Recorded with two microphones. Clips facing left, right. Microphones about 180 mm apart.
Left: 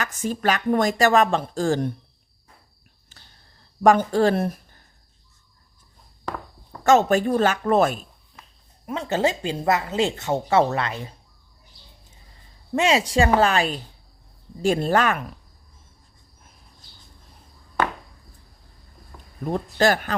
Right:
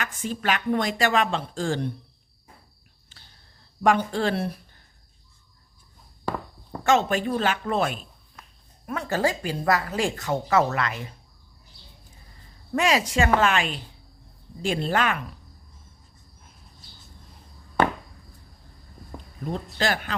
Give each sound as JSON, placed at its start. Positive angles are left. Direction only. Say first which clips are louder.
{"t": 0.0, "sound": "speech", "louder": "left 4 dB", "side_deg": 45}
{"t": 3.8, "sound": "speech", "louder": "left 5 dB", "side_deg": 40}
{"t": 6.8, "sound": "speech", "louder": "left 5 dB", "side_deg": 45}
{"t": 8.9, "sound": "speech", "louder": "left 2 dB", "side_deg": 20}
{"t": 12.7, "sound": "a woman's voice", "louder": "left 3 dB", "side_deg": 25}
{"t": 19.8, "sound": "speech", "louder": "left 7 dB", "side_deg": 45}